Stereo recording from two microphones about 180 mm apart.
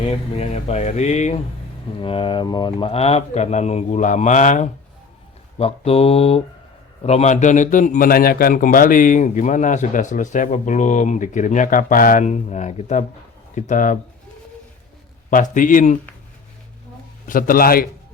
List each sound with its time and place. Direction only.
0.3 s speech: 35° left (ahead or behind)
2.0 s a man's voice: 30° left (ahead or behind)
15.3 s a man's voice: 45° left (ahead or behind)
17.2 s a man's voice: 50° left (ahead or behind)